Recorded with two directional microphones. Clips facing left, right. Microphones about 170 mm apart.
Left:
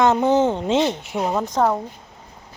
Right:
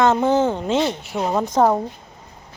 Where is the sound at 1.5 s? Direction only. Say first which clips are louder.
Right 4 dB; 20° right (ahead or behind).